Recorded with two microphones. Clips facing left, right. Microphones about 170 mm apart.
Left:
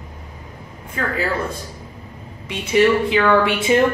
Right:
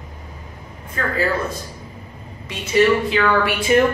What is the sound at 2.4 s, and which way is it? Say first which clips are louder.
A woman's voice: left 1 dB; 20° left (ahead or behind).